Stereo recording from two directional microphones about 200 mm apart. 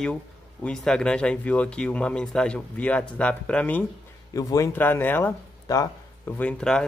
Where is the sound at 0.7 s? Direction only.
5° left (ahead or behind).